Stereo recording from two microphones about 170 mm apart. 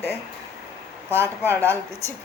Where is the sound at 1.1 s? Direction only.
15° right (ahead or behind).